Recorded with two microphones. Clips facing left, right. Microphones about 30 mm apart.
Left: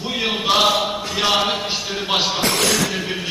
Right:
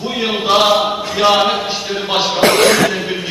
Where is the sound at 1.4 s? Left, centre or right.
Centre.